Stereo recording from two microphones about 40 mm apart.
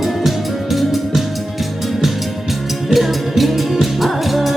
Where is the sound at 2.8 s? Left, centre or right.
Centre.